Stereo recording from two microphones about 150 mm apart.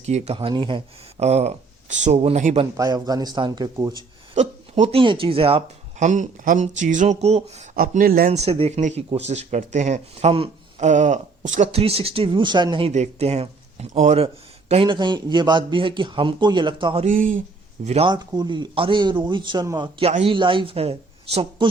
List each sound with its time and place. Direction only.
0.0 s speech: 45° right (ahead or behind)
0.3 s speech: 35° right (ahead or behind); by 2.6 s 50° right (ahead or behind)
2.7 s speech: 25° right (ahead or behind)
4.4 s speech: 45° right (ahead or behind); by 8.3 s 75° right (ahead or behind)
8.3 s speech: 45° right (ahead or behind)
12.9 s speech: 45° right (ahead or behind)
14.7 s a man's voice: 35° right (ahead or behind)
17.1 s a man's voice: 60° right (ahead or behind)
17.8 s speech: 45° right (ahead or behind)
18.1 s a man's voice: 30° right (ahead or behind)
20.0 s a man's voice: 40° right (ahead or behind)